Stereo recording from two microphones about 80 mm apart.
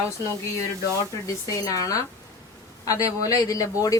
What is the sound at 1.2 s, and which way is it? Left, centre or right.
Speech, left.